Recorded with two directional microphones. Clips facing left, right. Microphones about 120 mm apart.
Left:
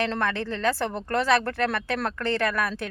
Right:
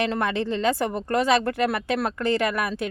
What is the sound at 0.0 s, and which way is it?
Speech, 15° right (ahead or behind).